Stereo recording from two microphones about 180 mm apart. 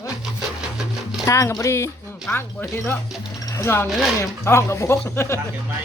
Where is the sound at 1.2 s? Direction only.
15° left (ahead or behind).